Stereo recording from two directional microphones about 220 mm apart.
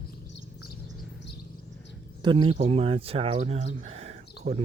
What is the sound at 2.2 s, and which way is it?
Speech, 25° right (ahead or behind).